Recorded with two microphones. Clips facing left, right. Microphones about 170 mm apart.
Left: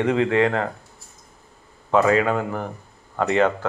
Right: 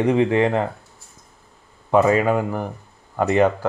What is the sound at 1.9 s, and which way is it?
A man's voice, 15° right (ahead or behind).